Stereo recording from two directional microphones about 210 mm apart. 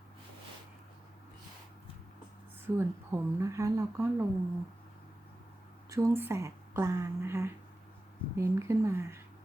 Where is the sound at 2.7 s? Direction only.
15° right (ahead or behind).